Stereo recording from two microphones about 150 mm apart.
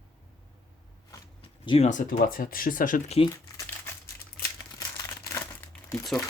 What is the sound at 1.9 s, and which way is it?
Speech, 60° left (ahead or behind).